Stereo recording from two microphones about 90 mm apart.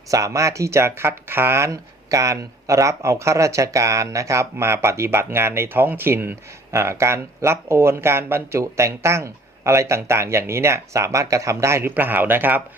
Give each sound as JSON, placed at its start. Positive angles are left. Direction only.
{"t": 0.1, "sound": "speech", "side_deg": -35}
{"t": 11.8, "sound": "speech", "side_deg": -20}